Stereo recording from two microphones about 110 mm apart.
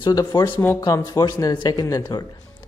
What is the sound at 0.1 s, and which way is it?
Speech, 35° left (ahead or behind).